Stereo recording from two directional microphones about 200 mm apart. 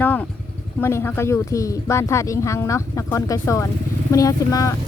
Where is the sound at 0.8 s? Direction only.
10° left (ahead or behind).